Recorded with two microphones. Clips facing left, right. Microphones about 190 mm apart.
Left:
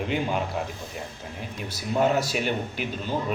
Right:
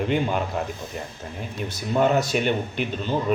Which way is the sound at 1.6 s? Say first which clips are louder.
Right 2 dB; 5° left (ahead or behind).